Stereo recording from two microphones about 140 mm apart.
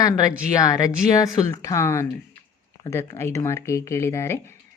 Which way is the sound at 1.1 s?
25° left (ahead or behind).